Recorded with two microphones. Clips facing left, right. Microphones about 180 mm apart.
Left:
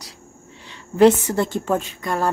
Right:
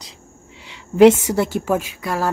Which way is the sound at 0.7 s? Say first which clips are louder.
Right 3 dB; 15° right (ahead or behind).